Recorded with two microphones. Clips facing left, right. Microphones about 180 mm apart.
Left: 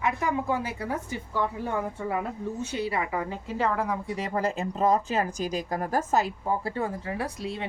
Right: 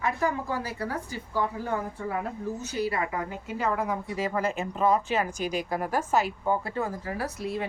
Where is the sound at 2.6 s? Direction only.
25° left (ahead or behind).